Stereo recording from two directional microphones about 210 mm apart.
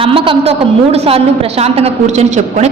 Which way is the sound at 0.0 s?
25° right (ahead or behind).